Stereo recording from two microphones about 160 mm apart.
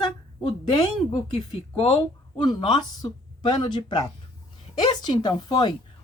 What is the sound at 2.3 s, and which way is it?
A woman's voice, 30° left (ahead or behind).